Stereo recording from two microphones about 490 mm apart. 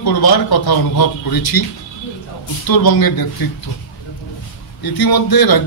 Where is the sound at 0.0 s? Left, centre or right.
Left.